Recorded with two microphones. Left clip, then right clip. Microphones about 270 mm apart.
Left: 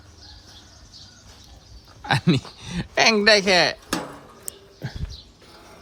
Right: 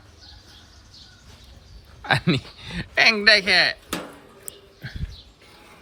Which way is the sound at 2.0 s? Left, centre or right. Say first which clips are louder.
Right 1 dB; centre.